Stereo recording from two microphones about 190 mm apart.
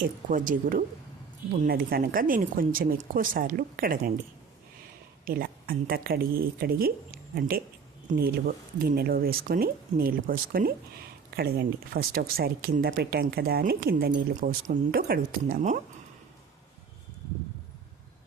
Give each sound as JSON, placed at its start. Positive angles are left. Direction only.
{"t": 0.3, "sound": "speech", "side_deg": -45}
{"t": 5.2, "sound": "speech", "side_deg": -50}